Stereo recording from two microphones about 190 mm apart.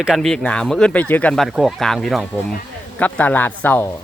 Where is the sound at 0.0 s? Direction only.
Centre (ahead or behind).